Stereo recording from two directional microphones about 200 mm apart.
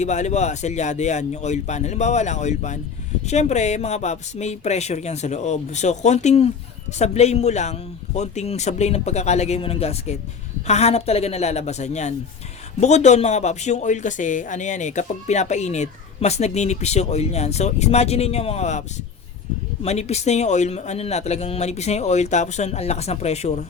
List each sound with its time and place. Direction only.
0.0 s speech: 35° left (ahead or behind)